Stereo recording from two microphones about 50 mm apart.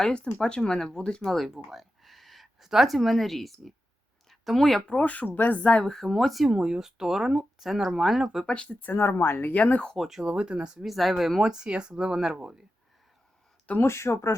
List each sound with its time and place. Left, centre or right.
0.0 s speech: centre
1.5 s speech: centre
4.3 s a sound: centre
4.9 s speech: left
5.8 s speech: centre
6.5 s speech: centre
8.4 s speech: centre
8.8 s speech: left
9.9 s speech: centre
10.2 s speech: centre
10.8 s speech: centre
13.8 s speech: left